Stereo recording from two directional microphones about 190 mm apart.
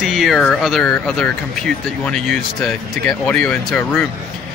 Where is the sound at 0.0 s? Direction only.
Centre (ahead or behind).